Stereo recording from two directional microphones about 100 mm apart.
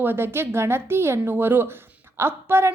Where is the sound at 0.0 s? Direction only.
20° right (ahead or behind).